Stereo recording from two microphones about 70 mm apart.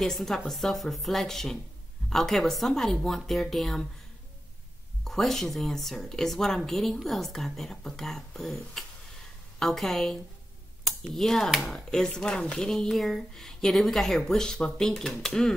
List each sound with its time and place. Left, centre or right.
0.0 s speech: centre
5.0 s speech: centre